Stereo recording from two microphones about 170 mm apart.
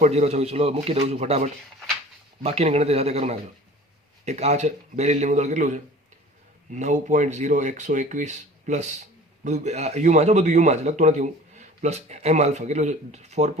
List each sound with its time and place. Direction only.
0.0 s speech: 40° right (ahead or behind)